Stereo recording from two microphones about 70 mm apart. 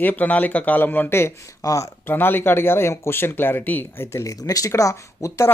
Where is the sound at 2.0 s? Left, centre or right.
Left.